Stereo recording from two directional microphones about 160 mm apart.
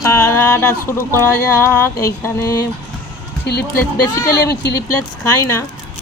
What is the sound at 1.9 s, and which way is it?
Speech, 20° left (ahead or behind).